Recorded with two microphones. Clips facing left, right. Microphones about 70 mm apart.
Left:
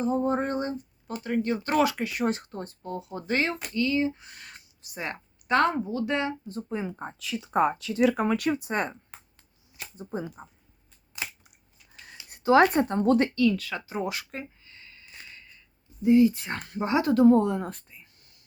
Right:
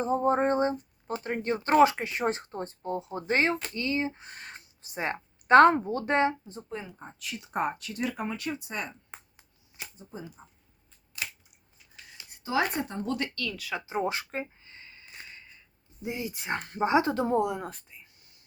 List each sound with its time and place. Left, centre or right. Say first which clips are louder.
0.0 s speech: right 1 dB; right
5.5 s speech: right 6 dB; right
6.7 s speech: left 6 dB; centre
8.0 s speech: left 9 dB; left
8.6 s speech: left 7 dB; left
9.1 s finger snapping: right 2 dB; centre
10.0 s speech: left 11 dB; left
12.3 s speech: left 9 dB; left
13.3 s speech: left 13 dB; centre
13.6 s speech: even; centre
13.8 s a sound: right 1 dB; right
16.0 s speech: left 16 dB; centre
17.4 s speech: left 2 dB; centre